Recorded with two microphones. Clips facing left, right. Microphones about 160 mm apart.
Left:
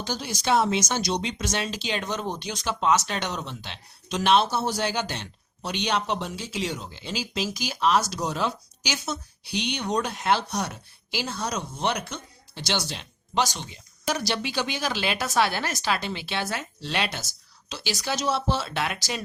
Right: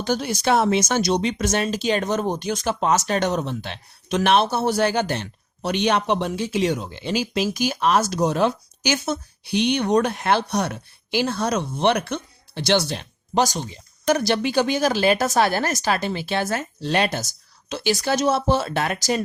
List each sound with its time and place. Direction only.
0.0 s speech: 60° right (ahead or behind); by 13.7 s 40° right (ahead or behind)
14.1 s speech: 55° right (ahead or behind)